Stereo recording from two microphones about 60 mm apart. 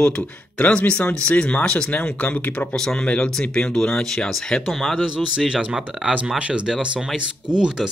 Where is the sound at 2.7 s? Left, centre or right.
Centre.